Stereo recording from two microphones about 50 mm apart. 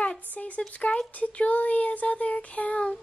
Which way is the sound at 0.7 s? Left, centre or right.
Left.